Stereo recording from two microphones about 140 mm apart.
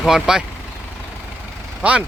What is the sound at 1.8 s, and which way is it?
Speech, 10° right (ahead or behind).